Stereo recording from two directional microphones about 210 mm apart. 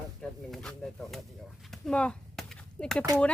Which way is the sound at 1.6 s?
5° left (ahead or behind).